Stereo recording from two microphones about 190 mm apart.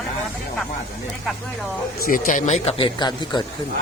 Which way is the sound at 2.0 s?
45° left (ahead or behind).